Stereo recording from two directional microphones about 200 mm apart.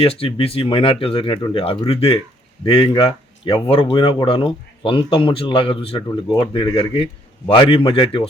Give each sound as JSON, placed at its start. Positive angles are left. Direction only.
{"t": 0.0, "sound": "speech", "side_deg": 30}